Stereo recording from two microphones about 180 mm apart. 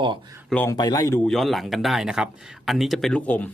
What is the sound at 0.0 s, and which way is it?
Speech, 25° right (ahead or behind).